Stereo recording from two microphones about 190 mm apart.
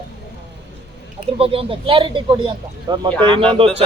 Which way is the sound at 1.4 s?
30° right (ahead or behind).